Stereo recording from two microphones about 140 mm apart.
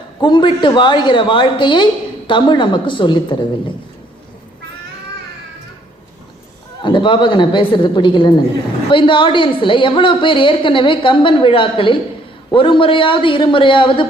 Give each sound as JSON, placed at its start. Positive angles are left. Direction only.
{"t": 0.2, "sound": "a woman's voice", "side_deg": 35}
{"t": 6.8, "sound": "a woman's voice", "side_deg": 35}